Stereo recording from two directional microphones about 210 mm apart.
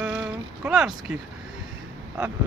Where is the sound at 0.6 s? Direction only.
5° right (ahead or behind).